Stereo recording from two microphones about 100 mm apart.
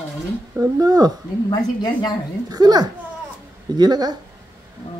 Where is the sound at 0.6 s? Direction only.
40° right (ahead or behind).